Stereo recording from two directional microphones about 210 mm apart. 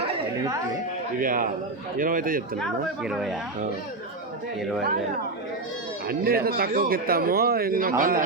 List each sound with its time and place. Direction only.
1.2 s a man's voice: 40° right (ahead or behind)
2.6 s speech: 5° right (ahead or behind)
6.1 s a man's voice: 45° right (ahead or behind)